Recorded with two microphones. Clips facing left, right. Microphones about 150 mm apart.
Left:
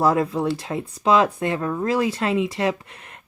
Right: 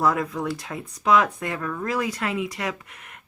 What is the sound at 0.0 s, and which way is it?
Speech, 30° left (ahead or behind).